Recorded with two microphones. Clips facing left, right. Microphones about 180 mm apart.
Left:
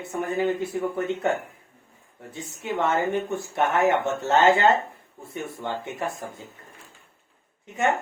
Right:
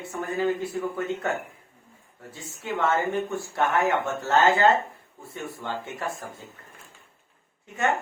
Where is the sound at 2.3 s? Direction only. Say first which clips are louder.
Left 3 dB; 20° left (ahead or behind).